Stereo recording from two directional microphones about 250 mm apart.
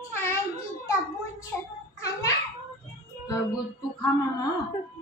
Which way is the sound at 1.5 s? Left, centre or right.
Centre.